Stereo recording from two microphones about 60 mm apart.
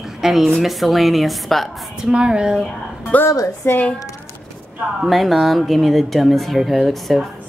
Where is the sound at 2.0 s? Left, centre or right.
Centre.